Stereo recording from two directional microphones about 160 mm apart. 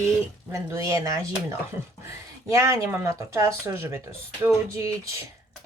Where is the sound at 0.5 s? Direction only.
20° right (ahead or behind).